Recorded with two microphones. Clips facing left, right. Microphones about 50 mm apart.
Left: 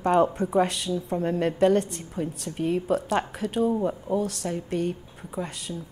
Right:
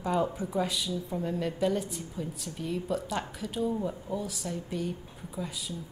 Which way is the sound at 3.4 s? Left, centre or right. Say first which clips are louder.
Left 7 dB; left.